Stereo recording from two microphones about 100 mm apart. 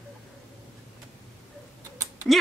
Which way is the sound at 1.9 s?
30° right (ahead or behind).